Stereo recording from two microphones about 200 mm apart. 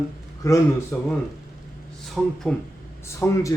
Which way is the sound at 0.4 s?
15° left (ahead or behind).